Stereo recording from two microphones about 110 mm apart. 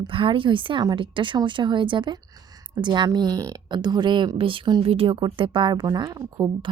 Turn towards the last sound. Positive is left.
turn(degrees=-35)  # may be behind; listen again after turning